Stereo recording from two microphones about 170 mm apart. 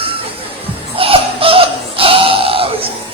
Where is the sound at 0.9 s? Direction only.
35° right (ahead or behind).